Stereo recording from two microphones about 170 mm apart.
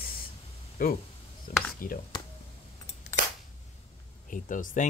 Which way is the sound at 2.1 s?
25° left (ahead or behind).